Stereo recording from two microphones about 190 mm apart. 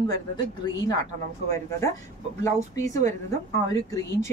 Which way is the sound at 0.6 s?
20° left (ahead or behind).